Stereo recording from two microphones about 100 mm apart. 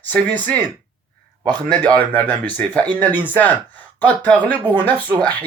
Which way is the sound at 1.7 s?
15° left (ahead or behind).